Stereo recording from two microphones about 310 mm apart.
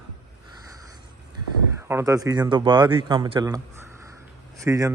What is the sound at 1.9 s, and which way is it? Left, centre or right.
Speech, centre.